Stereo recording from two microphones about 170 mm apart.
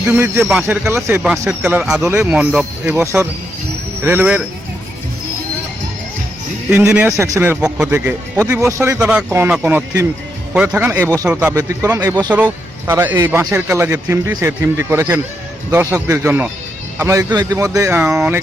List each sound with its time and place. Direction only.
0.0 s speech: 10° right (ahead or behind)
0.9 s a man's voice: 15° right (ahead or behind)
6.7 s speech: 10° right (ahead or behind)
18.0 s a man's voice: 5° right (ahead or behind)